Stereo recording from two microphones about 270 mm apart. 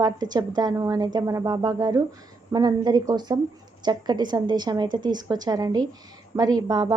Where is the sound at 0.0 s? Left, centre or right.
Centre.